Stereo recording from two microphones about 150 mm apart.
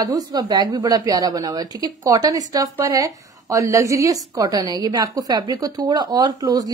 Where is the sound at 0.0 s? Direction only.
25° right (ahead or behind).